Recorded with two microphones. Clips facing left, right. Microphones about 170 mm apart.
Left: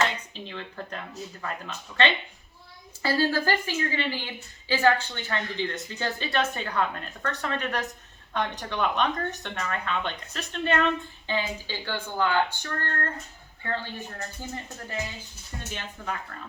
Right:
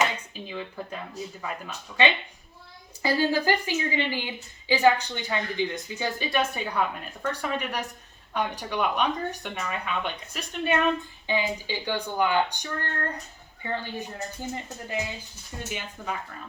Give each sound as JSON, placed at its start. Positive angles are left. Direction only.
{"t": 0.0, "sound": "a woman's voice", "side_deg": -10}